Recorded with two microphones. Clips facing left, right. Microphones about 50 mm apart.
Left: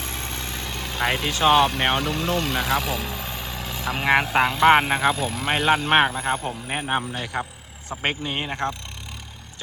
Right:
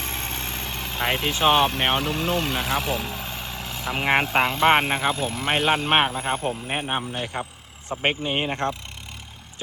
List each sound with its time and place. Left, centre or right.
0.0 s vehicle: right
0.6 s vehicle: centre
1.3 s speech: centre
7.9 s speech: centre